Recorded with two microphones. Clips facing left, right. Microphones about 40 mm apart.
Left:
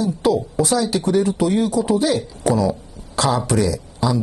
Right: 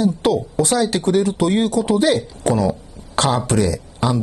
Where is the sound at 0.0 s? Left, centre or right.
Right.